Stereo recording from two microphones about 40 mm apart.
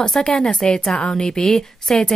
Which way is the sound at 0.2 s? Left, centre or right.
Left.